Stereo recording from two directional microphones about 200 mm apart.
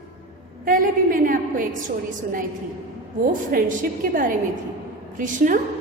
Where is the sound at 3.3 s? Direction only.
40° right (ahead or behind).